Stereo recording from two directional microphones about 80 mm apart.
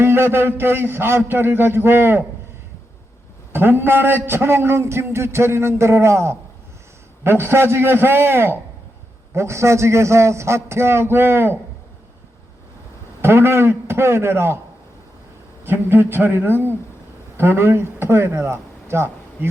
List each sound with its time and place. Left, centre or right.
0.0 s a man's voice: right
3.5 s a man's voice: right
13.2 s a man's voice: right
15.6 s a man's voice: right